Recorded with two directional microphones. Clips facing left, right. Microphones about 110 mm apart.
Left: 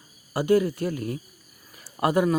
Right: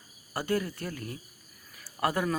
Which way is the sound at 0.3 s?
15° left (ahead or behind).